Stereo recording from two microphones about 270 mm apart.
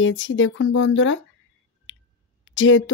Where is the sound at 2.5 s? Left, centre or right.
Left.